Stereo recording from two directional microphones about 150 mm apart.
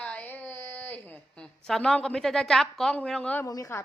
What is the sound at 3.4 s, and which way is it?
Speech, 20° left (ahead or behind).